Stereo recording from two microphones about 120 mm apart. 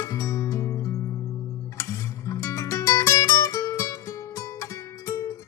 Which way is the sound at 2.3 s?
25° left (ahead or behind).